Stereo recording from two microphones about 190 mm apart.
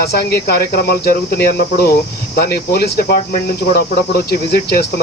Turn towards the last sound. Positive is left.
turn(degrees=55)  # may be behind; listen again after turning